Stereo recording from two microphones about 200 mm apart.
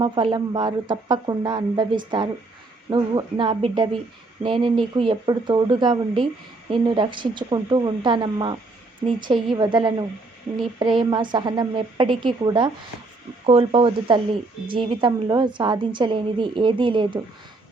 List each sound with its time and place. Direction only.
0.0 s a woman's voice: 25° right (ahead or behind)